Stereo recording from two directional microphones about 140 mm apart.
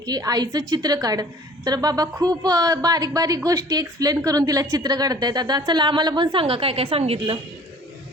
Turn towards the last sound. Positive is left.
turn(degrees=-40)  # may be behind; listen again after turning